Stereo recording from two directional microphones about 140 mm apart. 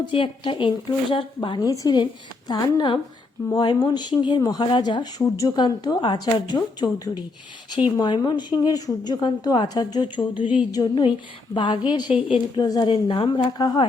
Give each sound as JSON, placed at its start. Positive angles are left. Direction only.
{"t": 0.1, "sound": "a woman's voice", "side_deg": 35}
{"t": 1.5, "sound": "a woman's voice", "side_deg": 25}